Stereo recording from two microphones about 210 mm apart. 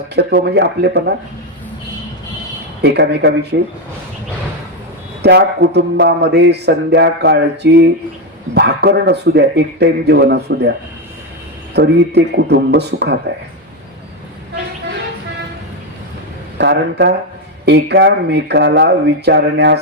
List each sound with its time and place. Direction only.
0.2 s speech: 50° right (ahead or behind)
2.8 s speech: 55° right (ahead or behind)
5.2 s speech: 50° right (ahead or behind)
11.7 s speech: 55° right (ahead or behind)
16.6 s speech: 55° right (ahead or behind)